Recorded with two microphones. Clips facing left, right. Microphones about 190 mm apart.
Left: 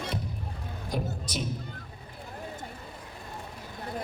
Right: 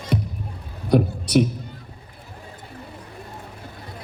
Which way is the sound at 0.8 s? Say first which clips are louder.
Right 14 dB; 70° right (ahead or behind).